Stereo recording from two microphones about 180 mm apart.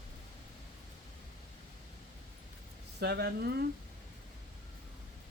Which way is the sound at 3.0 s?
65° right (ahead or behind).